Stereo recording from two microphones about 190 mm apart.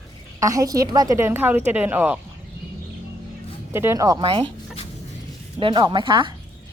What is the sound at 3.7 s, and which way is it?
Speech, 15° right (ahead or behind).